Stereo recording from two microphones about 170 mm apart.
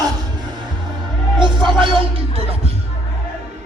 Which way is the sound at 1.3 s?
25° right (ahead or behind).